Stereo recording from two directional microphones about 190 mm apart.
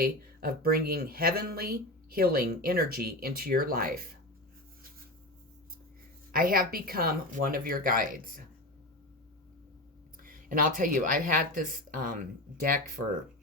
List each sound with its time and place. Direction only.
0.0 s speech: 55° right (ahead or behind)
6.3 s speech: 50° right (ahead or behind)
10.2 s speech: 45° right (ahead or behind)